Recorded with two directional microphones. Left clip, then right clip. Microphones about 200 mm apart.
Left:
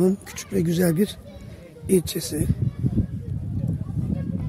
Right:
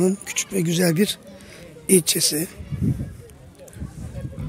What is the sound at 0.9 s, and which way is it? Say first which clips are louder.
Speech: right 3 dB; 10° left (ahead or behind).